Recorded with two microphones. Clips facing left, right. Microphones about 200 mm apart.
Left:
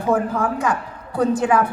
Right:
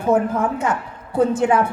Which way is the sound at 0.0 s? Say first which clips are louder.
Right 2 dB; 25° right (ahead or behind).